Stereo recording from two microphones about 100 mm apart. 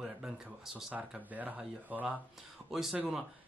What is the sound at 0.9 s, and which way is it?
Speech, 15° right (ahead or behind).